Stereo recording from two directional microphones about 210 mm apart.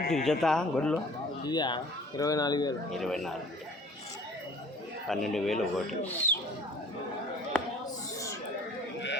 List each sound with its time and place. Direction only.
0.1 s speech: centre (ahead or behind)
1.5 s speech: 20° left (ahead or behind)
2.9 s speech: centre (ahead or behind)
5.0 s speech: centre (ahead or behind)